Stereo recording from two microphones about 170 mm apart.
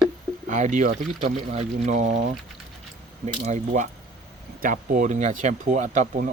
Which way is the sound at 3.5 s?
45° right (ahead or behind).